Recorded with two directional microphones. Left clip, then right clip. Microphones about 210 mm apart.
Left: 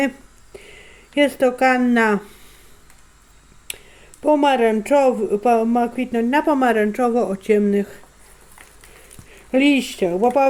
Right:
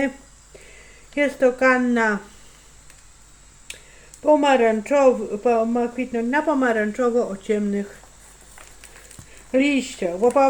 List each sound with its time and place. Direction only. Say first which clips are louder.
0.5 s speech: left 5 dB; 50° left (ahead or behind)
4.3 s speech: even; 50° left (ahead or behind)
9.5 s speech: left 3 dB; 50° left (ahead or behind)